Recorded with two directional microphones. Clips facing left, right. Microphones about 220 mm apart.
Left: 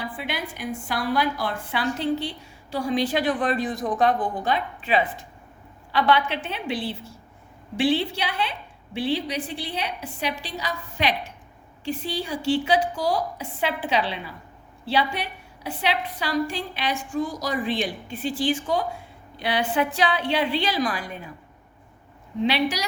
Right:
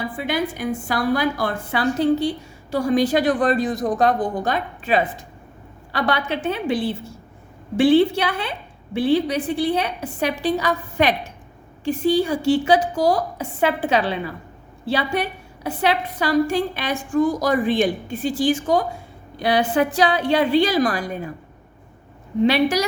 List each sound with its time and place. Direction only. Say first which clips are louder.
0.0 s a woman's voice: right 7 dB; 45° right (ahead or behind)
22.4 s a woman's voice: right 6 dB; 50° right (ahead or behind)